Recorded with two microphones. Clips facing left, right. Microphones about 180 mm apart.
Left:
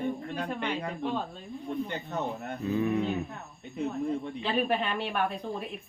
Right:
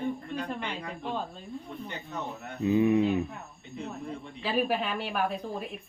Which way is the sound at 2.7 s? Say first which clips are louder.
Right 5 dB; 20° right (ahead or behind).